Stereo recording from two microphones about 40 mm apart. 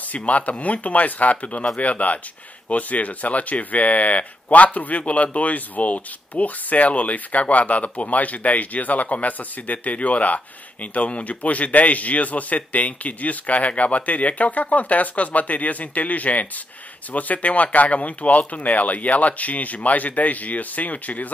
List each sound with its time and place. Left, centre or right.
0.1 s speech: left